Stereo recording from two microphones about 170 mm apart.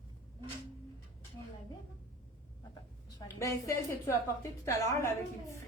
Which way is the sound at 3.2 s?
25° left (ahead or behind).